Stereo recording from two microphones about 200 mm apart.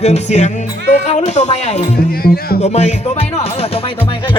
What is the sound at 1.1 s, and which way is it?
Speech, 35° left (ahead or behind).